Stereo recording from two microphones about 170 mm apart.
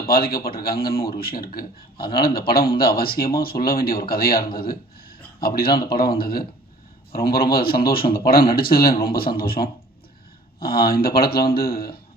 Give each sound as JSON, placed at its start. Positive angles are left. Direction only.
{"t": 0.0, "sound": "a man's voice", "side_deg": 60}